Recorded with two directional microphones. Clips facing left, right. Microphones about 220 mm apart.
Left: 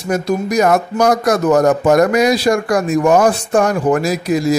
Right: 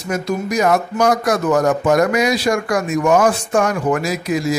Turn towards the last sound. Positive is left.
turn(degrees=35)  # may be behind; listen again after turning